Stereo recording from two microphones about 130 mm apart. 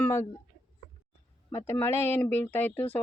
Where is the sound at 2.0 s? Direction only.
55° right (ahead or behind).